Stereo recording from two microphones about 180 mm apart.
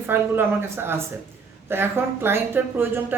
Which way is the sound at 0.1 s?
10° right (ahead or behind).